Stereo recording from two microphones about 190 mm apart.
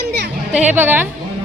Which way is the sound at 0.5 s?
10° right (ahead or behind).